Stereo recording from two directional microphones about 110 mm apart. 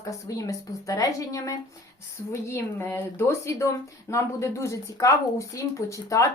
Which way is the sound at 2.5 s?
20° left (ahead or behind).